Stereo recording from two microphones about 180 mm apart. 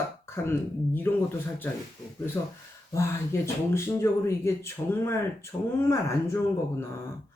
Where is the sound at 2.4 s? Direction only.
15° left (ahead or behind).